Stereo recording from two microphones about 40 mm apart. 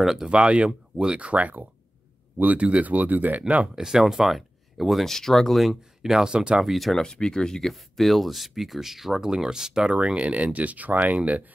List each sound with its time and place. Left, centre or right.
0.0 s speech: centre
0.3 s speech: right
3.4 s speech: right
3.7 s speech: centre
5.0 s speech: centre
6.3 s speech: right
6.6 s speech: centre
7.0 s speech: centre
7.7 s speech: centre
9.2 s speech: centre
9.8 s speech: right